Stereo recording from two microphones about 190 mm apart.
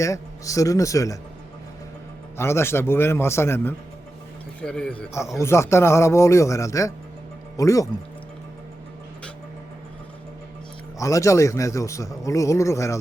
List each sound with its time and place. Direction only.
0.0 s a man's voice: 15° left (ahead or behind)
2.4 s a man's voice: 15° left (ahead or behind)
10.9 s a man's voice: 15° left (ahead or behind)